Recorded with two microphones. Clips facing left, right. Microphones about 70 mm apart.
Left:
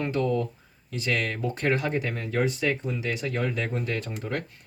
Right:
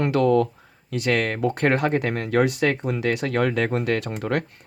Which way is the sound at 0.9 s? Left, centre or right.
Right.